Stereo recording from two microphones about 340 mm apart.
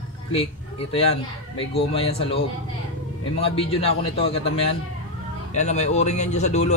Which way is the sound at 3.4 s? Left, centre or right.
Centre.